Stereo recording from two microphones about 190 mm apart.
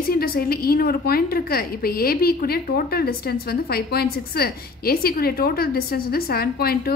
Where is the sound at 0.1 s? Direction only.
50° left (ahead or behind).